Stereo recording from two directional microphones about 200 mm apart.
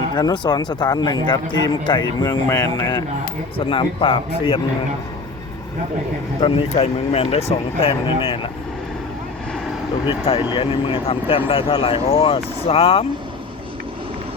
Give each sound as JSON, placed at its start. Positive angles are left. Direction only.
{"t": 0.1, "sound": "a man's voice", "side_deg": 20}
{"t": 6.4, "sound": "a man's voice", "side_deg": 30}
{"t": 10.2, "sound": "a man's voice", "side_deg": 25}